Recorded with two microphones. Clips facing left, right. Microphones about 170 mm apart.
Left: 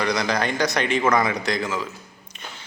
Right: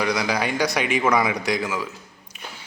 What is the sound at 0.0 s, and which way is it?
Speech, 10° right (ahead or behind).